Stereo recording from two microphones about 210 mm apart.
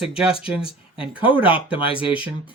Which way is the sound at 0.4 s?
5° right (ahead or behind).